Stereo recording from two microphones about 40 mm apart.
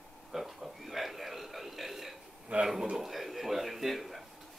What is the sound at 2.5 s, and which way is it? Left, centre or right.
Speech, right.